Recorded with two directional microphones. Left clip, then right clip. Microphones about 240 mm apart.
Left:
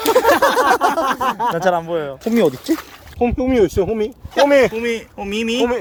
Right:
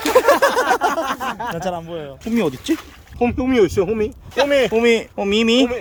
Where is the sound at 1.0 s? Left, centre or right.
Left.